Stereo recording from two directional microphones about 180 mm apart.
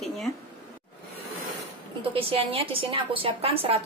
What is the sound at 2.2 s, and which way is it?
A woman's voice, 30° right (ahead or behind).